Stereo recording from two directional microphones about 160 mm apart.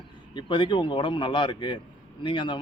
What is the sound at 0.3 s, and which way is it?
A man's voice, 30° left (ahead or behind).